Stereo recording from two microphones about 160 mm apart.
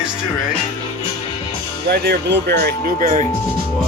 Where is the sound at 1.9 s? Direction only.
90° right; by 3.3 s 55° right (ahead or behind).